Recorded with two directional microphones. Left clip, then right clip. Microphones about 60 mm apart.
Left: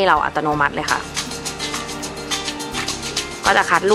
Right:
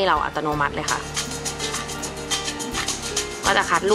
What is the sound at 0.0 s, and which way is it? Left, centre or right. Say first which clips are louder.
Speech: left 5 dB; centre.